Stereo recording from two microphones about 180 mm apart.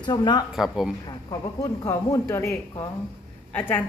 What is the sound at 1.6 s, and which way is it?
Speech, 15° left (ahead or behind).